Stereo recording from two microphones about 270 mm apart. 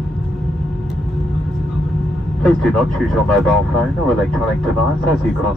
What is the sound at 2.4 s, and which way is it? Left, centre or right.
Speech, centre.